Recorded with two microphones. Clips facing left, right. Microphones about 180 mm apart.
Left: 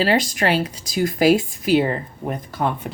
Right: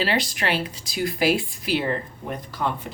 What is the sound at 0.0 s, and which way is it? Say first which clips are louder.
Speech: left 6 dB; 45° left (ahead or behind).